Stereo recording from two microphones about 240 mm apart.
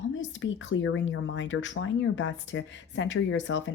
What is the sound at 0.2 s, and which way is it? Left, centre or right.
Speech, left.